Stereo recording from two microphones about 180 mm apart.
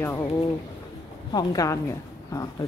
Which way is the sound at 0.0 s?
15° left (ahead or behind).